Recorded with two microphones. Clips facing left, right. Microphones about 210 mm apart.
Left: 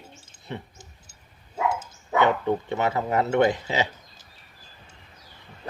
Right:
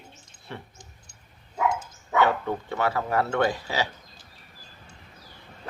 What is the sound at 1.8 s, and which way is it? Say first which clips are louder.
Speech: left 1 dB; 20° left (ahead or behind).